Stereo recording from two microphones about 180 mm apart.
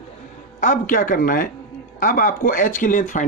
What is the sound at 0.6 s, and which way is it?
Speech, 45° left (ahead or behind).